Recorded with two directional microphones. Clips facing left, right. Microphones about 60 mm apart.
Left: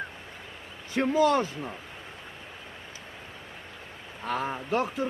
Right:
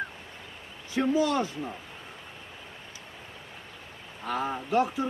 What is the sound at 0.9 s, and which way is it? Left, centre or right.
Speech, left.